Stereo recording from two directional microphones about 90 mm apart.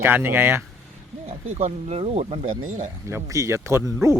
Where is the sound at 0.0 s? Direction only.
25° right (ahead or behind).